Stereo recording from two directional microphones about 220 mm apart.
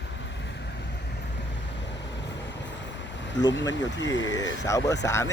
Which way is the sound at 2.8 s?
55° left (ahead or behind).